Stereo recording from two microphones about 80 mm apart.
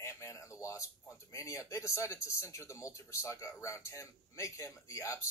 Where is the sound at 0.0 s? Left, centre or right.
Left.